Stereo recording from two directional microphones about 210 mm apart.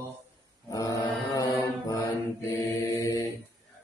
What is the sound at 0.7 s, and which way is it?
Mantra, 15° left (ahead or behind).